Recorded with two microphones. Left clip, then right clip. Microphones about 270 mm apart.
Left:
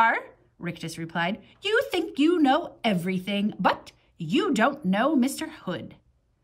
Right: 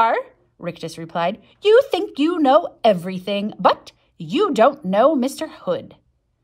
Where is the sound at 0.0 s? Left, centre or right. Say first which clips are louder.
Right 4 dB; centre.